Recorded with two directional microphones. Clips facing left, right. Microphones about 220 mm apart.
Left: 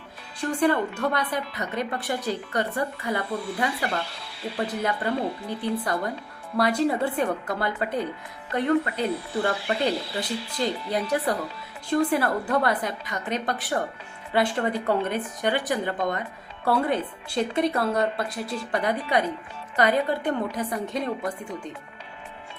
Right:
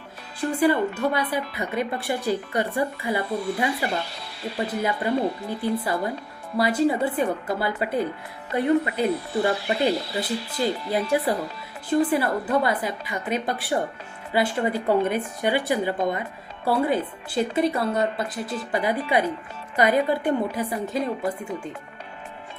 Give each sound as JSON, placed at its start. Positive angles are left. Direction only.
{"t": 0.3, "sound": "a woman's voice", "side_deg": -5}
{"t": 3.3, "sound": "speech", "side_deg": -40}
{"t": 3.6, "sound": "a woman's voice", "side_deg": -10}